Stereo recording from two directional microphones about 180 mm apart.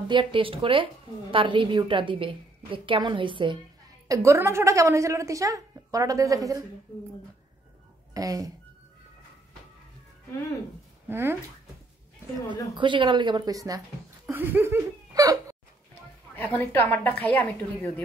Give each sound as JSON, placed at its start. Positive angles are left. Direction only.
{"t": 0.1, "sound": "speech", "side_deg": -30}
{"t": 4.1, "sound": "a woman's voice", "side_deg": -15}
{"t": 8.1, "sound": "speech", "side_deg": -20}
{"t": 11.1, "sound": "speech", "side_deg": -10}
{"t": 12.4, "sound": "speech", "side_deg": -25}
{"t": 15.9, "sound": "a woman's voice", "side_deg": 10}